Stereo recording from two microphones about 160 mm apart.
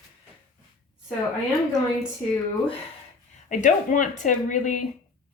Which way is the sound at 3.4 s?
50° left (ahead or behind).